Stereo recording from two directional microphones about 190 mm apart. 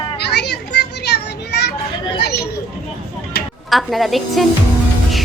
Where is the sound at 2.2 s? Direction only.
60° left (ahead or behind).